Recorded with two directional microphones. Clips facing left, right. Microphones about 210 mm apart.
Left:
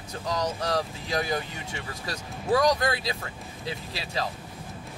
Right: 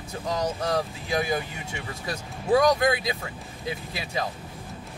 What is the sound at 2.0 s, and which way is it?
Speech, 20° right (ahead or behind).